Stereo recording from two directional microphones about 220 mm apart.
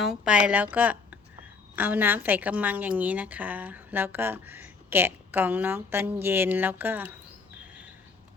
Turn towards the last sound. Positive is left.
turn(degrees=-5)  # may be behind; listen again after turning